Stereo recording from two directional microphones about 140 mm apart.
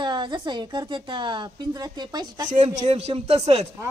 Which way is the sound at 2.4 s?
60° right (ahead or behind).